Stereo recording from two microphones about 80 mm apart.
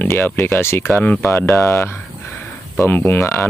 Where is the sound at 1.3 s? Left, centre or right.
Left.